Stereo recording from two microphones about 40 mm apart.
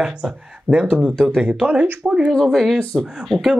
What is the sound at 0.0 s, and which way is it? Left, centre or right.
Speech, right.